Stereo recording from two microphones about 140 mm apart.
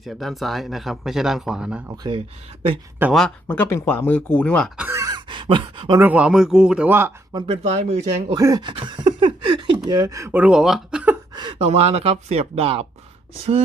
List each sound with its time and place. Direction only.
0.0 s speech: centre (ahead or behind)
3.1 s speech: 5° left (ahead or behind)
4.9 s a sound: 25° right (ahead or behind)
6.0 s speech: 10° right (ahead or behind)
7.3 s speech: 40° right (ahead or behind)
8.3 s speech: 25° right (ahead or behind)
8.7 s a sound: 35° right (ahead or behind)
10.3 s speech: 5° right (ahead or behind)
11.6 s speech: 50° right (ahead or behind)